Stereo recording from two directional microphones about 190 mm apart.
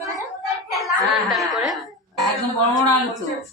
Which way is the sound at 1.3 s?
Centre (ahead or behind).